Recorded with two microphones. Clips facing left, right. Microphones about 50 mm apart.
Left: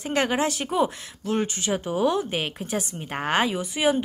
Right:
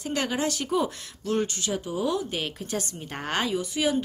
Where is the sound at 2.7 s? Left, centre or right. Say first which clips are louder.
Left 3 dB; centre.